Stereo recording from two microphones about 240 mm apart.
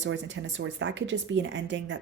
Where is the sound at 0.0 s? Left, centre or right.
Right.